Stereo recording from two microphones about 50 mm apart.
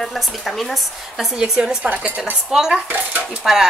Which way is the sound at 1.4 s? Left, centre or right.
Centre.